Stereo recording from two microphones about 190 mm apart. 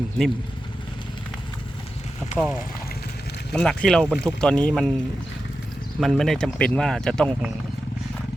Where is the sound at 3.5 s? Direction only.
5° left (ahead or behind).